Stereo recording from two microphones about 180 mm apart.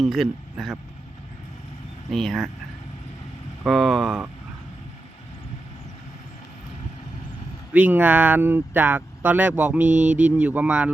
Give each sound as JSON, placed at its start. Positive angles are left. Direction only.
{"t": 0.0, "sound": "speech", "side_deg": 0}
{"t": 2.0, "sound": "speech", "side_deg": 0}
{"t": 3.6, "sound": "speech", "side_deg": 0}
{"t": 7.7, "sound": "speech", "side_deg": -10}
{"t": 9.8, "sound": "mantra", "side_deg": -40}
{"t": 10.3, "sound": "speech", "side_deg": -10}